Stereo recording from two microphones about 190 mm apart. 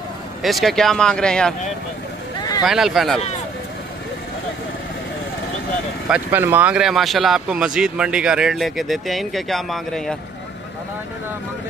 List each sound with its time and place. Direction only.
0.4 s speech: centre (ahead or behind)
2.6 s speech: centre (ahead or behind)
6.0 s speech: 10° right (ahead or behind)